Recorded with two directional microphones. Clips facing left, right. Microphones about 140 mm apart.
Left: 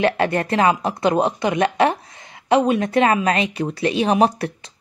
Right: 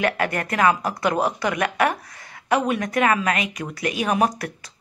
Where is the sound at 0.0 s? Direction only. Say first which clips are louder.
Left 4 dB; 25° left (ahead or behind).